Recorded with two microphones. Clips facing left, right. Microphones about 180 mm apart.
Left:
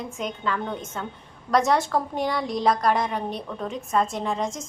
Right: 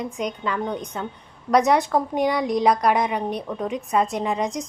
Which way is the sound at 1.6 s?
20° right (ahead or behind).